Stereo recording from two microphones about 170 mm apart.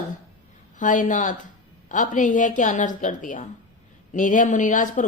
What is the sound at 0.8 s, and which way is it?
A woman's voice, 50° left (ahead or behind).